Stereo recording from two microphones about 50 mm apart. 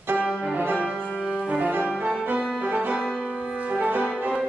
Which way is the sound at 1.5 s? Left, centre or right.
Right.